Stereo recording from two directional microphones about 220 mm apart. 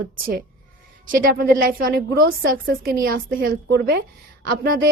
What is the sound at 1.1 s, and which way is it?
A woman's voice, 40° right (ahead or behind).